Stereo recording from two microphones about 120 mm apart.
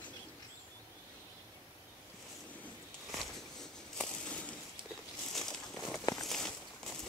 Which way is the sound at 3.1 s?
5° left (ahead or behind).